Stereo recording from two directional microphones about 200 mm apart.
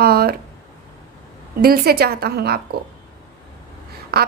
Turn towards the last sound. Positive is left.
turn(degrees=-50)  # may be behind; listen again after turning